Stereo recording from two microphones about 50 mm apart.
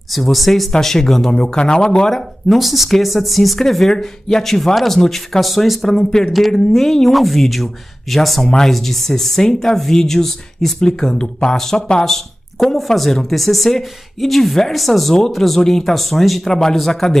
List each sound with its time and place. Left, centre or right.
0.1 s speech: centre
2.0 s speech: centre
8.5 s speech: centre